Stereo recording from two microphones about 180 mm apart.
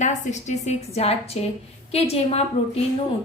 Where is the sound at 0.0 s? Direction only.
40° left (ahead or behind).